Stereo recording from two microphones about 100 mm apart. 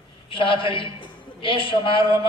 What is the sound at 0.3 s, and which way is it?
A man's voice, 60° left (ahead or behind).